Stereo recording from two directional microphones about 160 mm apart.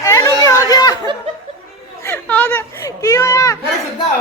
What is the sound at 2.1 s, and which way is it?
Speech, 10° left (ahead or behind).